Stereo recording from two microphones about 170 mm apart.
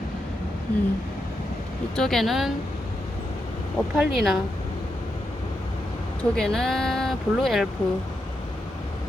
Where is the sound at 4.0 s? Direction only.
Centre (ahead or behind).